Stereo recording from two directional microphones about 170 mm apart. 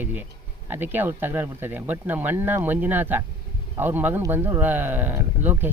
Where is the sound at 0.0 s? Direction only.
10° right (ahead or behind).